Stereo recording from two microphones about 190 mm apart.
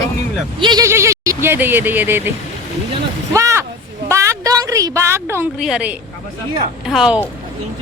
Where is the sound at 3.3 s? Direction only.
15° right (ahead or behind).